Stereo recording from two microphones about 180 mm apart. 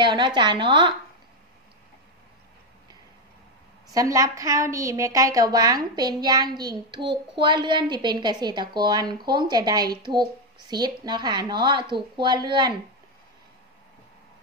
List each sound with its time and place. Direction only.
0.0 s a woman's voice: 25° right (ahead or behind)
3.9 s a woman's voice: 20° right (ahead or behind)